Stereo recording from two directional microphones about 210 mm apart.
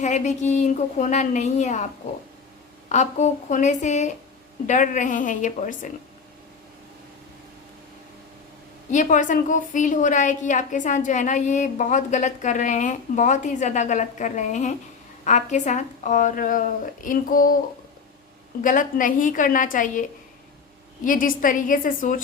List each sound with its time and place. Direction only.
0.0 s a woman's voice: 35° left (ahead or behind)
2.9 s a woman's voice: 35° left (ahead or behind)
8.9 s a woman's voice: 35° left (ahead or behind)
18.6 s a woman's voice: 40° left (ahead or behind)